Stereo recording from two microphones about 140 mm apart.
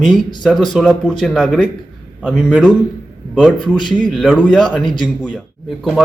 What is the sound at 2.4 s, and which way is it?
Speech, 10° right (ahead or behind).